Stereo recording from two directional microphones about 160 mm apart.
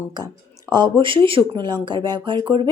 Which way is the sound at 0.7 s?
30° right (ahead or behind).